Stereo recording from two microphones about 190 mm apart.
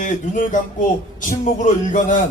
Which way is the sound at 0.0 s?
40° left (ahead or behind).